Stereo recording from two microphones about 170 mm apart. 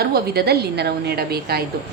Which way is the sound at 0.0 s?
65° right (ahead or behind).